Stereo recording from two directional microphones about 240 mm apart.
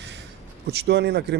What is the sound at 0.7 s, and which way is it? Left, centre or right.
Speech, right.